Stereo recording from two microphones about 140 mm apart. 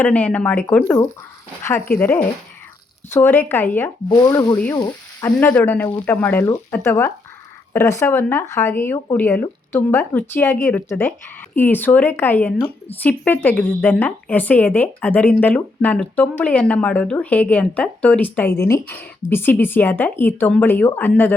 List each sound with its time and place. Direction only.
0.0 s a woman's voice: 10° left (ahead or behind)